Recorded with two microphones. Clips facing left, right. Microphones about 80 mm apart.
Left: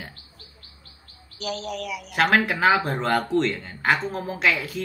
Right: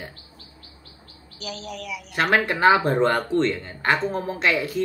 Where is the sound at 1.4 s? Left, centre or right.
Left.